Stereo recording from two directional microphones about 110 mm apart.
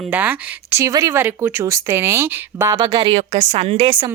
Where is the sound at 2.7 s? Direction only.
35° right (ahead or behind).